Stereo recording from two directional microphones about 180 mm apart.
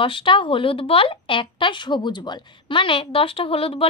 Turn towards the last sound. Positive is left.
turn(degrees=30)  # may be behind; listen again after turning